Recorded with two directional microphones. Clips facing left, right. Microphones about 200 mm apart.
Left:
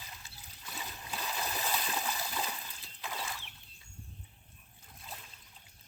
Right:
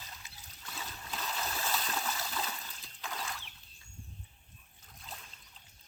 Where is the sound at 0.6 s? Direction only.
15° left (ahead or behind).